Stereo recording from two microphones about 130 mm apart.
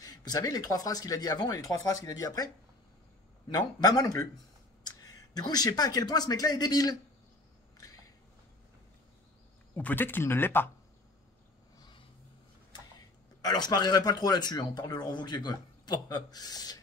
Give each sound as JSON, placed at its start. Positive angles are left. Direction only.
{"t": 0.0, "sound": "speech", "side_deg": 30}
{"t": 7.7, "sound": "a sound", "side_deg": 25}
{"t": 9.8, "sound": "speech", "side_deg": 15}
{"t": 13.4, "sound": "speech", "side_deg": 30}